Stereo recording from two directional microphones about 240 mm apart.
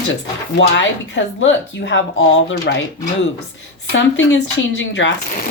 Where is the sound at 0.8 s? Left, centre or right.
Left.